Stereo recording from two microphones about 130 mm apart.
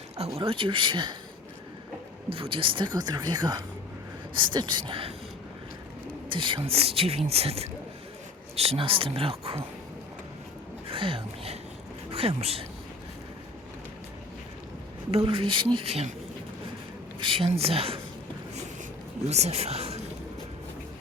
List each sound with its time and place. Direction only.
0.3 s speech: 45° right (ahead or behind)
2.3 s speech: 45° right (ahead or behind)
6.2 s speech: 40° right (ahead or behind)
10.8 s a sound: 45° right (ahead or behind)
12.1 s speech: 50° right (ahead or behind)
15.1 s speech: 45° right (ahead or behind)
17.2 s speech: 40° right (ahead or behind)
19.3 s speech: 55° right (ahead or behind)